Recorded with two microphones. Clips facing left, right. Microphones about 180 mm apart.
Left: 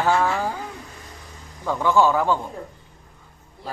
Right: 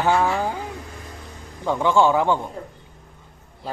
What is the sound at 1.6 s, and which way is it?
Speech, 25° right (ahead or behind).